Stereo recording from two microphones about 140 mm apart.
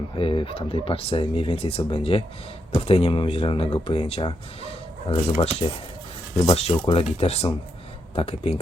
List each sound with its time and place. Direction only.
0.2 s speech: 40° left (ahead or behind)